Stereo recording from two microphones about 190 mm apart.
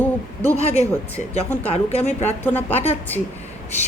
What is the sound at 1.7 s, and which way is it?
Speech, 30° left (ahead or behind).